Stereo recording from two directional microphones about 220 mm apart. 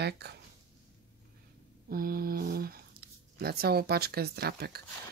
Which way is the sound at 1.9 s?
40° right (ahead or behind).